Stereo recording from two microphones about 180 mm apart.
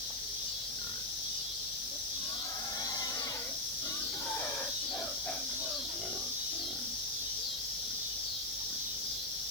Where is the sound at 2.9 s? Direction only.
20° left (ahead or behind).